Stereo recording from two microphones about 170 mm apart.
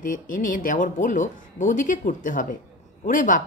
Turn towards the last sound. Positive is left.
turn(degrees=50)  # may be behind; listen again after turning